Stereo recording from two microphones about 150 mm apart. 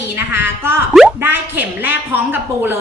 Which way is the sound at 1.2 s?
15° right (ahead or behind).